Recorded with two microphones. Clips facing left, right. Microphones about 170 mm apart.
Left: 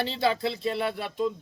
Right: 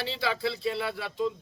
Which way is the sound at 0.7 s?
50° left (ahead or behind).